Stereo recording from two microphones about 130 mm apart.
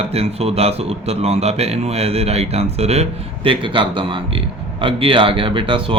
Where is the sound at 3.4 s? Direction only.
40° right (ahead or behind).